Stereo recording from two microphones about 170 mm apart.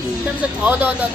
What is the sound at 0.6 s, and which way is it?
Speech, 10° right (ahead or behind).